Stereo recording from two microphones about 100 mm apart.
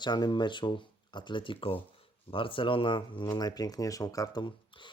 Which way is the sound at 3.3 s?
40° left (ahead or behind).